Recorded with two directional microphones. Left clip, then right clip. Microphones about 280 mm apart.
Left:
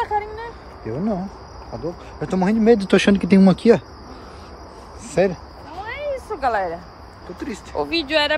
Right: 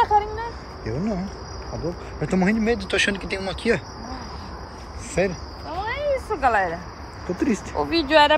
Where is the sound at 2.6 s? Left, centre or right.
Left.